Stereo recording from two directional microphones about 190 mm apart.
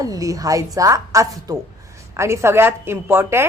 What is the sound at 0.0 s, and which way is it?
A woman's voice, 20° right (ahead or behind).